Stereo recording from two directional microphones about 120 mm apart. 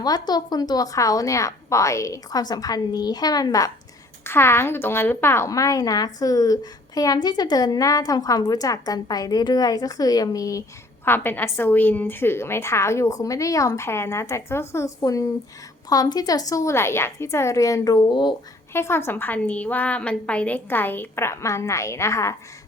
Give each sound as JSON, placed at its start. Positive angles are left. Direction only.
{"t": 0.0, "sound": "a woman's voice", "side_deg": 35}
{"t": 4.3, "sound": "a woman's voice", "side_deg": 20}
{"t": 11.0, "sound": "a woman's voice", "side_deg": 20}
{"t": 18.7, "sound": "a woman's voice", "side_deg": 20}